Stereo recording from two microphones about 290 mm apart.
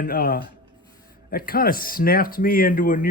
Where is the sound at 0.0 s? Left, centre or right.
Left.